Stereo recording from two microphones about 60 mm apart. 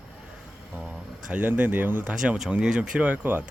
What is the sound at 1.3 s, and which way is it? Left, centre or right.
Speech, right.